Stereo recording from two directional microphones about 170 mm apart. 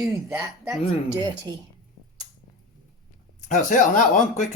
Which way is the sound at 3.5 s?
45° left (ahead or behind).